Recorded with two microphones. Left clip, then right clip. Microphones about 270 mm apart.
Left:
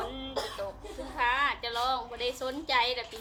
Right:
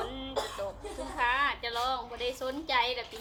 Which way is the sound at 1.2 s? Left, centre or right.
Centre.